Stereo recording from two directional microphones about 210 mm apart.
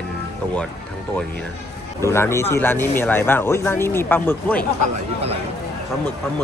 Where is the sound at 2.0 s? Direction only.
10° left (ahead or behind).